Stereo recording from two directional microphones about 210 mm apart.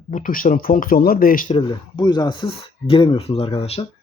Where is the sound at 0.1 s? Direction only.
40° left (ahead or behind).